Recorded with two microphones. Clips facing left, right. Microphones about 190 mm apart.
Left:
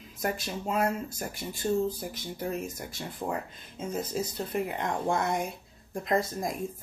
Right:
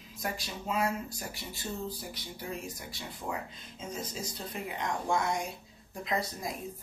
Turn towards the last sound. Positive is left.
turn(degrees=50)  # may be behind; listen again after turning